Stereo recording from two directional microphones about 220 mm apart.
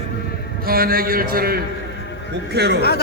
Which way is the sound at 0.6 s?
40° right (ahead or behind).